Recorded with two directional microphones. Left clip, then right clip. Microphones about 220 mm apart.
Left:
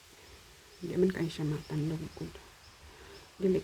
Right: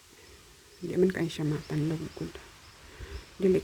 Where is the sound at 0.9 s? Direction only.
5° right (ahead or behind).